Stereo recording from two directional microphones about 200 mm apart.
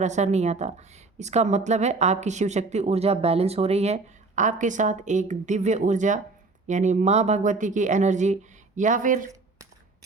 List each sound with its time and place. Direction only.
0.0 s speech: 35° right (ahead or behind)